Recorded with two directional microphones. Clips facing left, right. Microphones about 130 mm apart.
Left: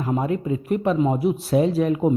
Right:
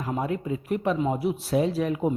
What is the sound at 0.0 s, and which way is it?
Speech, 35° left (ahead or behind).